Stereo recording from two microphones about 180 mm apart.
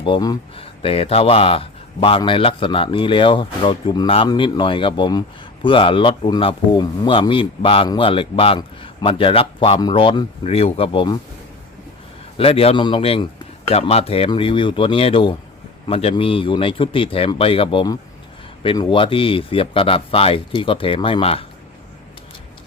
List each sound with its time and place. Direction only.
0.0 s speech: 25° left (ahead or behind)
12.4 s speech: 30° left (ahead or behind)